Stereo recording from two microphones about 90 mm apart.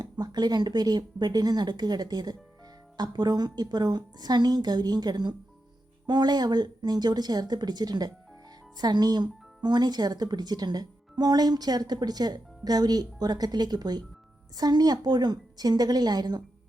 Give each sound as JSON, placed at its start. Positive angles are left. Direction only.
{"t": 0.0, "sound": "speech", "side_deg": -50}